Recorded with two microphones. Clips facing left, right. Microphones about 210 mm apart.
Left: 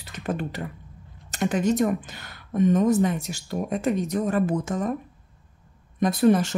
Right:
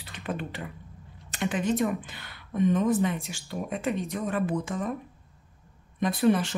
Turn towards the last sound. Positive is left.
turn(degrees=45)  # may be behind; listen again after turning